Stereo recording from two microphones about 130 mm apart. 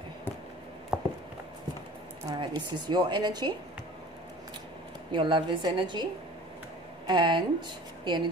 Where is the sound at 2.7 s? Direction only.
35° right (ahead or behind).